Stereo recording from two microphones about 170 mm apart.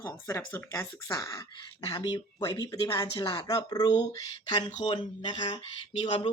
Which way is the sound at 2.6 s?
20° left (ahead or behind).